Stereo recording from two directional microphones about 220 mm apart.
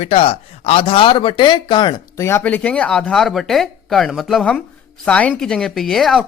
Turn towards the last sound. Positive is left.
turn(degrees=0)  # may be behind; listen again after turning